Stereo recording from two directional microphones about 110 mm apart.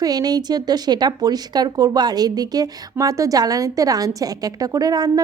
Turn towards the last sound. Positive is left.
turn(degrees=-35)  # may be behind; listen again after turning